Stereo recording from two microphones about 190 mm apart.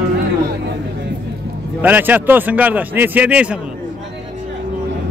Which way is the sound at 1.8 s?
10° right (ahead or behind).